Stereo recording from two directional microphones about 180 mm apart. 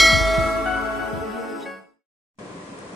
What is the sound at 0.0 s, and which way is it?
Bell, centre (ahead or behind).